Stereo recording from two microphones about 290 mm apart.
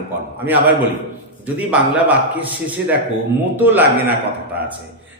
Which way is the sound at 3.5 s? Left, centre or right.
Centre.